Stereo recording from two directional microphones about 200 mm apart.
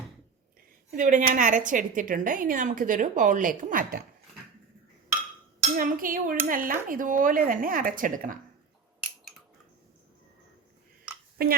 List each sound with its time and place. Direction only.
0.9 s a woman's voice: 40° right (ahead or behind)
5.7 s speech: 45° right (ahead or behind)
11.4 s speech: 50° right (ahead or behind)